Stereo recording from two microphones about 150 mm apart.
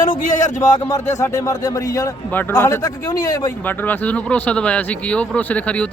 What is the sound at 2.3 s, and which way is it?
A man's voice, 10° left (ahead or behind).